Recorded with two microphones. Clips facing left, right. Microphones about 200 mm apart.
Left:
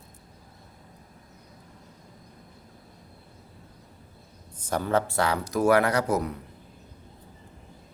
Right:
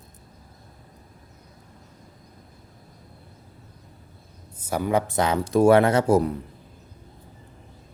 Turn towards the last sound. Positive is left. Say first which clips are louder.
# right 6 dB
turn(degrees=-30)  # may be behind; listen again after turning